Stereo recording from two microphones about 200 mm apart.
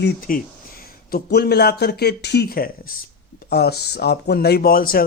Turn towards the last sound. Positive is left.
turn(degrees=45)  # may be behind; listen again after turning